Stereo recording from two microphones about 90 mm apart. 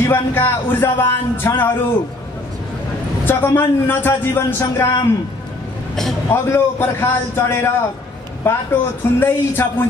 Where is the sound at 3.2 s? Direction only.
25° left (ahead or behind).